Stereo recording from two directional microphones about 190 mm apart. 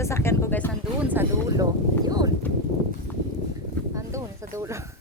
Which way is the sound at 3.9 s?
15° right (ahead or behind).